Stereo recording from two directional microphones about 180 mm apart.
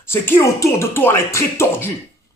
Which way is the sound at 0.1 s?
15° left (ahead or behind).